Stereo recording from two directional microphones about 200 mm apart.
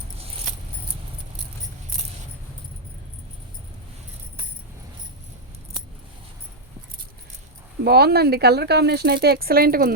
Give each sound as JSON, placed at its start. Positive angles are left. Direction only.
{"t": 7.9, "sound": "speech", "side_deg": -55}